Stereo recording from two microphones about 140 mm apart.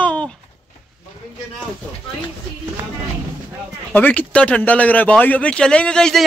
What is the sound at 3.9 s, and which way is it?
Speech, 10° left (ahead or behind).